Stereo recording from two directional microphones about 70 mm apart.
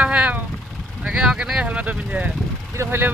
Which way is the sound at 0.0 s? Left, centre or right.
Centre.